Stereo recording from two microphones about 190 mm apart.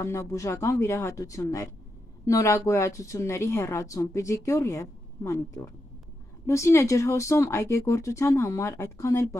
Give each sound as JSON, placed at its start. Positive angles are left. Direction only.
{"t": 0.0, "sound": "a woman's voice", "side_deg": 15}
{"t": 6.4, "sound": "a woman's voice", "side_deg": 15}